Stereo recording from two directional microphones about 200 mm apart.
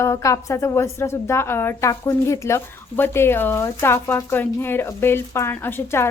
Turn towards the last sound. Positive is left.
turn(degrees=10)  # may be behind; listen again after turning